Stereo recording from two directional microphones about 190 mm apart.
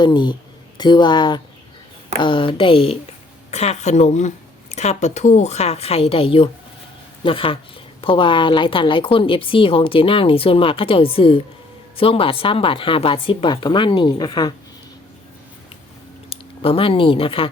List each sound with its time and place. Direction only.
0.0 s a woman's voice: 25° left (ahead or behind)
16.3 s speech: 30° left (ahead or behind)